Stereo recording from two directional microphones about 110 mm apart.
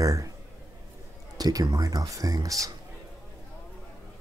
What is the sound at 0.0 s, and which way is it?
Speech, 30° right (ahead or behind).